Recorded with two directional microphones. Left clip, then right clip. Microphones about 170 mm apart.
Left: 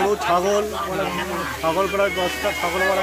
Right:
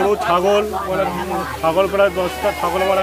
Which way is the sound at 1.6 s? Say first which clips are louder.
Right 5 dB; 10° right (ahead or behind).